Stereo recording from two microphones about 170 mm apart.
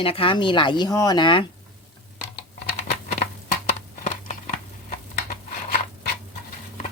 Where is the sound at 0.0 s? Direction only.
30° left (ahead or behind).